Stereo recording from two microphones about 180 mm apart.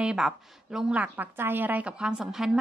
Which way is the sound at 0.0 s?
5° right (ahead or behind).